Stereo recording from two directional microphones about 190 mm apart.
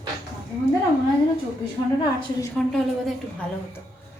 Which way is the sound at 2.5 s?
Centre (ahead or behind).